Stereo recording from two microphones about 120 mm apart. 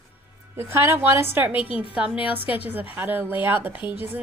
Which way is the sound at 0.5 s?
20° right (ahead or behind).